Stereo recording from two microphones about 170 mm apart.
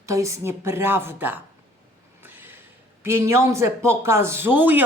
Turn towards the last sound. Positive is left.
turn(degrees=-10)  # may be behind; listen again after turning